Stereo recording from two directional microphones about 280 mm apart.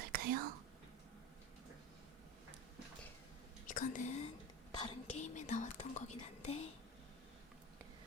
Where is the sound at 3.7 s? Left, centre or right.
Left.